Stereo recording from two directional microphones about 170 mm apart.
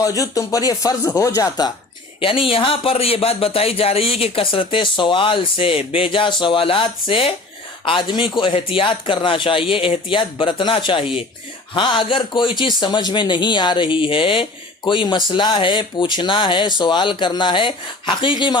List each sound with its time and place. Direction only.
0.0 s speech: 20° left (ahead or behind)